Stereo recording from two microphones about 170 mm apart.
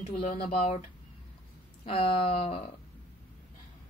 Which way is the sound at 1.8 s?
35° left (ahead or behind).